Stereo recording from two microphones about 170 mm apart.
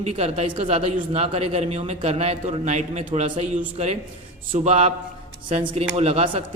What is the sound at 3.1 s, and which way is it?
A man's voice, 30° right (ahead or behind).